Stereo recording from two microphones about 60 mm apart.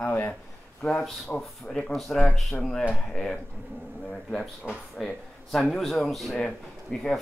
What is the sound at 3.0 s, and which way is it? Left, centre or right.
Speech, centre.